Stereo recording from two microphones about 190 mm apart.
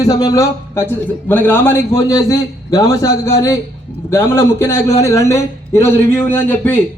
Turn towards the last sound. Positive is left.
turn(degrees=10)  # may be behind; listen again after turning